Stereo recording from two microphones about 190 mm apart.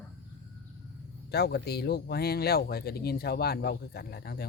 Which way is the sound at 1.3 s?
60° left (ahead or behind).